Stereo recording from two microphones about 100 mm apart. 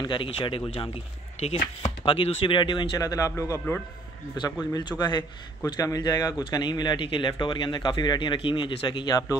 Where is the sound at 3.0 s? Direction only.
35° left (ahead or behind).